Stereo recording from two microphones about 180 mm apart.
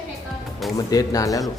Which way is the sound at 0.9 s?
20° left (ahead or behind).